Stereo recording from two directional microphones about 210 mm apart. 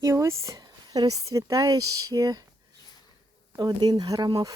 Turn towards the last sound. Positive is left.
turn(degrees=-20)  # may be behind; listen again after turning